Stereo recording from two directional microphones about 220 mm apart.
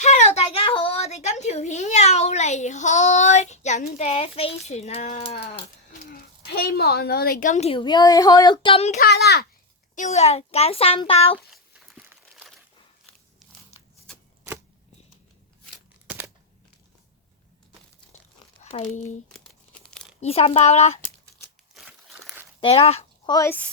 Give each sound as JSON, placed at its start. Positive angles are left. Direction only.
{"t": 0.0, "sound": "a sound", "side_deg": 30}
{"t": 3.9, "sound": "a woman's voice", "side_deg": 30}
{"t": 6.5, "sound": "a woman's voice", "side_deg": 45}
{"t": 9.0, "sound": "a child's voice", "side_deg": 45}
{"t": 9.9, "sound": "a woman's voice", "side_deg": 35}
{"t": 11.5, "sound": "crumpling", "side_deg": -5}
{"t": 16.0, "sound": "a sound", "side_deg": -5}
{"t": 18.6, "sound": "speech", "side_deg": 30}
{"t": 19.3, "sound": "crumpling", "side_deg": 5}
{"t": 20.2, "sound": "a woman's voice", "side_deg": 25}
{"t": 21.8, "sound": "crumpling", "side_deg": -5}
{"t": 22.6, "sound": "speech", "side_deg": 25}